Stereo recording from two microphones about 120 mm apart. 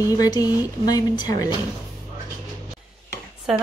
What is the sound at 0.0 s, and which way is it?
A woman's voice, 30° left (ahead or behind).